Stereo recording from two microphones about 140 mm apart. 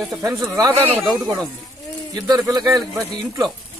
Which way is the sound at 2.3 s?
30° right (ahead or behind).